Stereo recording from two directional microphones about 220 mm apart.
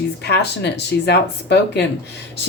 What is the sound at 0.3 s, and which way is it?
Speech, 50° left (ahead or behind).